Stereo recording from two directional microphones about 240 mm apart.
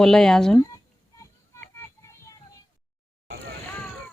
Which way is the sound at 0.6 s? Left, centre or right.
Centre.